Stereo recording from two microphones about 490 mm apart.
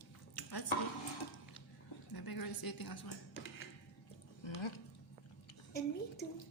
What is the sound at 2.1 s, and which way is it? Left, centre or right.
A woman's voice, left.